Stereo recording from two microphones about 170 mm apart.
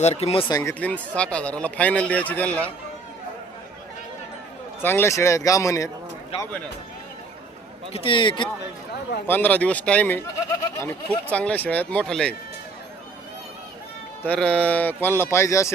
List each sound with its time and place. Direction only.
0.0 s speech: 40° left (ahead or behind)
0.5 s speech: 10° left (ahead or behind)
4.8 s speech: 10° left (ahead or behind)
6.3 s a sound: 35° left (ahead or behind)
7.9 s speech: 30° left (ahead or behind)
9.2 s speech: 10° left (ahead or behind)
11.3 s speech: 10° left (ahead or behind)
14.3 s speech: 5° left (ahead or behind)